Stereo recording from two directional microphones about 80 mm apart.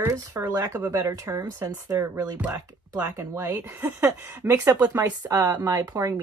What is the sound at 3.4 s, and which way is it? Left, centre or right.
Speech, right.